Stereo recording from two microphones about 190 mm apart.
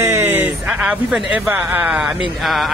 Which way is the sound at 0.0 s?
15° right (ahead or behind).